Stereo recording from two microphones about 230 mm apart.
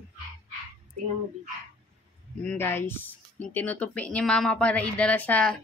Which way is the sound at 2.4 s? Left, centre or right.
Centre.